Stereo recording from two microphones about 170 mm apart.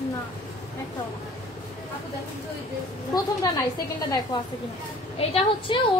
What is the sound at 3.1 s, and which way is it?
A woman's voice, 20° left (ahead or behind).